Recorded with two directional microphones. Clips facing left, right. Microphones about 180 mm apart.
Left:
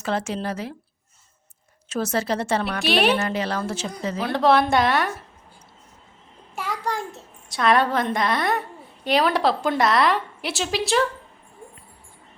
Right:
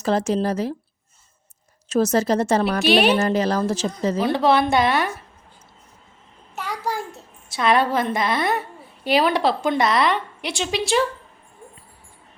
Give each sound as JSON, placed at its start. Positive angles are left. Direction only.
{"t": 0.0, "sound": "a woman's voice", "side_deg": -40}
{"t": 1.9, "sound": "a woman's voice", "side_deg": -40}
{"t": 2.8, "sound": "a woman's voice", "side_deg": 0}
{"t": 3.2, "sound": "a woman's voice", "side_deg": -40}
{"t": 4.2, "sound": "a woman's voice", "side_deg": 0}
{"t": 6.6, "sound": "a sound", "side_deg": 0}
{"t": 9.0, "sound": "a woman's voice", "side_deg": 0}